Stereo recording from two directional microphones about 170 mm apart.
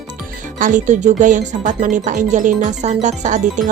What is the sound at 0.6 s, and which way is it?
Speech, 50° right (ahead or behind).